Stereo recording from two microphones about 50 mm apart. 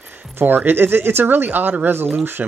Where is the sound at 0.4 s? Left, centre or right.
Right.